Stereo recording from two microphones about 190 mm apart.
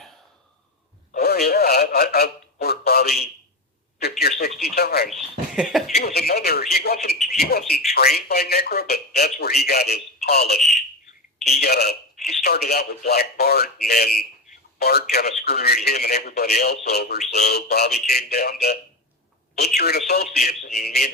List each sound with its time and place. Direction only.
1.2 s radio: 55° left (ahead or behind)
4.2 s telephone: 55° left (ahead or behind)
4.6 s radio: 55° left (ahead or behind)
5.0 s speech: centre (ahead or behind)
6.0 s speech: 55° left (ahead or behind)